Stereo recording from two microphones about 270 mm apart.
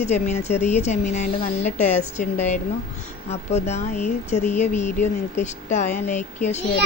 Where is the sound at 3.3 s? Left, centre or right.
Left.